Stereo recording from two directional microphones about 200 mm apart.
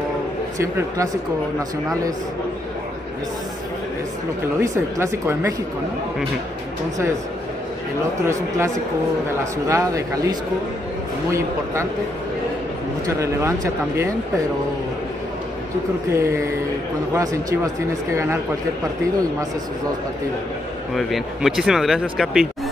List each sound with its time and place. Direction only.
0.6 s speech: 15° right (ahead or behind)
4.6 s speech: 15° right (ahead or behind)
8.3 s speech: 15° right (ahead or behind)
11.3 s speech: 15° right (ahead or behind)
13.0 s speech: 15° right (ahead or behind)
16.1 s speech: 15° right (ahead or behind)
20.9 s speech: centre (ahead or behind)